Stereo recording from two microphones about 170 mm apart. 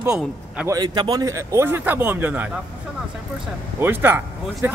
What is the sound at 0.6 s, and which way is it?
Speech, 25° right (ahead or behind).